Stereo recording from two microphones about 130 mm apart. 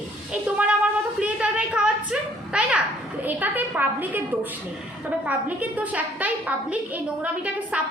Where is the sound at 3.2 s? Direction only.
15° right (ahead or behind).